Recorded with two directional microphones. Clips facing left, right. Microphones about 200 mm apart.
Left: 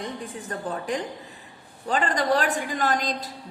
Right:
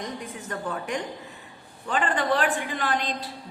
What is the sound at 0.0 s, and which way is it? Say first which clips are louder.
A woman's voice: left 1 dB; 35° left (ahead or behind).